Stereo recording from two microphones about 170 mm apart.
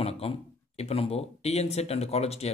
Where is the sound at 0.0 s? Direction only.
35° left (ahead or behind).